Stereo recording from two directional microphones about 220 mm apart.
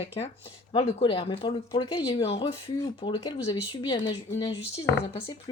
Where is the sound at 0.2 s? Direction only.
25° left (ahead or behind).